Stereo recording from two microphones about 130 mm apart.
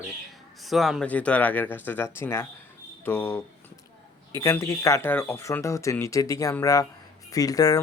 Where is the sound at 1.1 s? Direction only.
10° left (ahead or behind).